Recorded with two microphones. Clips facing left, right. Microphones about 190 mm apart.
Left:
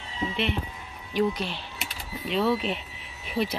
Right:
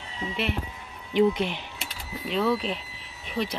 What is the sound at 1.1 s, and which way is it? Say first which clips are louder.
Speech: right 4 dB; 20° right (ahead or behind).